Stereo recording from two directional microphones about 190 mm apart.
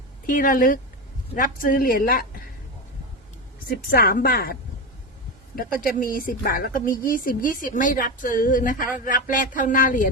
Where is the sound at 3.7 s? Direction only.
50° left (ahead or behind).